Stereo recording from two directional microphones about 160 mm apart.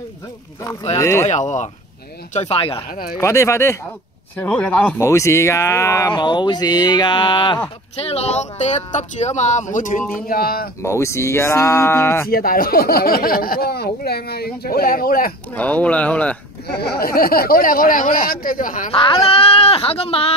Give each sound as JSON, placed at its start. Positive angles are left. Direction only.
{"t": 0.9, "sound": "speech", "side_deg": 20}
{"t": 1.3, "sound": "speech", "side_deg": 50}
{"t": 2.3, "sound": "speech", "side_deg": 40}
{"t": 2.9, "sound": "speech", "side_deg": 65}
{"t": 3.2, "sound": "speech", "side_deg": 20}
{"t": 5.0, "sound": "speech", "side_deg": 20}
{"t": 8.0, "sound": "speech", "side_deg": 40}
{"t": 10.2, "sound": "speech", "side_deg": 65}
{"t": 10.8, "sound": "speech", "side_deg": 15}
{"t": 12.3, "sound": "speech", "side_deg": 65}
{"t": 15.5, "sound": "speech", "side_deg": 10}
{"t": 16.6, "sound": "speech", "side_deg": 80}
{"t": 18.9, "sound": "speech", "side_deg": 35}